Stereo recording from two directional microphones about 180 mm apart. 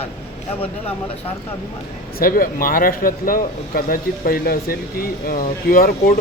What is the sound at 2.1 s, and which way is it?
A man's voice, 55° left (ahead or behind).